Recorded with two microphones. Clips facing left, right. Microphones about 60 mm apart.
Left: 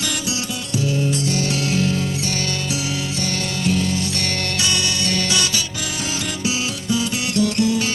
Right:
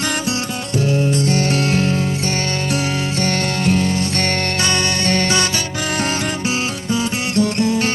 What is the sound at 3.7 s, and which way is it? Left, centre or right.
Music, right.